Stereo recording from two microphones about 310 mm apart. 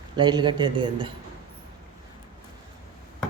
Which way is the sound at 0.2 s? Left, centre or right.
Centre.